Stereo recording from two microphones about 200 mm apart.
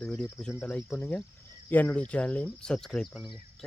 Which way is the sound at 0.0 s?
5° left (ahead or behind).